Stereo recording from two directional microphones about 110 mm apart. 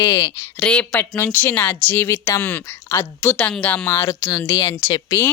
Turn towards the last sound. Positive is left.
turn(degrees=20)  # may be behind; listen again after turning